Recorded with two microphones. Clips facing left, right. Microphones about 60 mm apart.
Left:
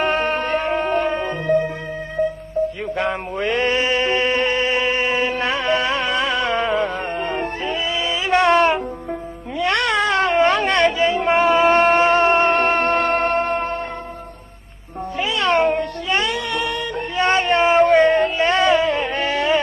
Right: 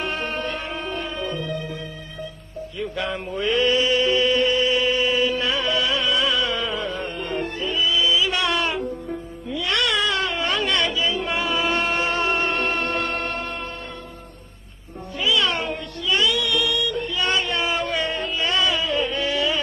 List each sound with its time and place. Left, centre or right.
0.0 s music: left
2.8 s a sound: left
9.6 s cat: left
15.2 s music: left